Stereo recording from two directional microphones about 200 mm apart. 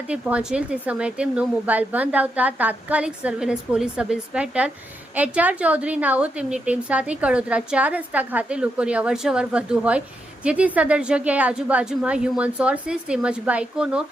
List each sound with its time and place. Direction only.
0.1 s a woman's voice: 5° right (ahead or behind)